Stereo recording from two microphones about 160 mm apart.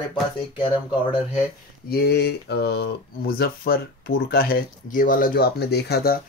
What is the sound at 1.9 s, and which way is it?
Speech, 90° left.